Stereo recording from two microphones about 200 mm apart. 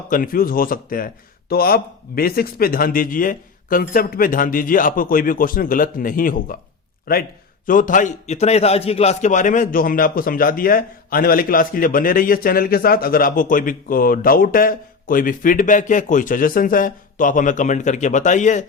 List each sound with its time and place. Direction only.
0.1 s a man's voice: 45° left (ahead or behind)